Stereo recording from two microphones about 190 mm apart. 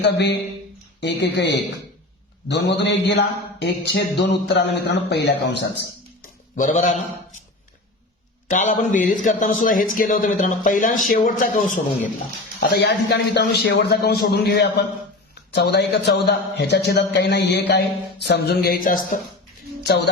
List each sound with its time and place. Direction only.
0.0 s a man's voice: 60° left (ahead or behind)
6.6 s a man's voice: 40° left (ahead or behind)
8.4 s a man's voice: 40° left (ahead or behind)
12.5 s a man's voice: 60° left (ahead or behind)